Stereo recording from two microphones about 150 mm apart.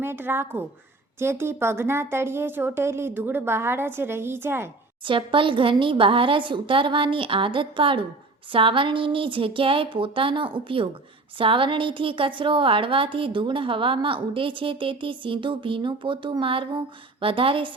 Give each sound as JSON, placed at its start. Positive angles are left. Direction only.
{"t": 0.0, "sound": "a woman's voice", "side_deg": -15}
{"t": 5.0, "sound": "a woman's voice", "side_deg": -35}